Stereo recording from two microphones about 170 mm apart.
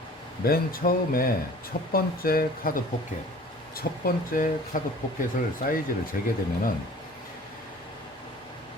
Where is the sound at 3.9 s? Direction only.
65° left (ahead or behind).